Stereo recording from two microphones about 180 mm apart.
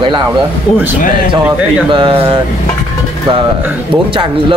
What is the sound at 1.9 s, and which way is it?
Speech, 30° right (ahead or behind).